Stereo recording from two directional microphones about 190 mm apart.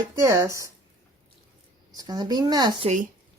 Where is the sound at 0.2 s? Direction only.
15° right (ahead or behind).